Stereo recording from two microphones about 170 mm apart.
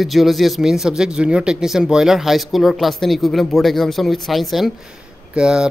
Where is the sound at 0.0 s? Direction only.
Centre (ahead or behind).